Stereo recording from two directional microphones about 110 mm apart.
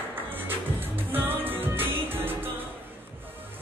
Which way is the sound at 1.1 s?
20° right (ahead or behind).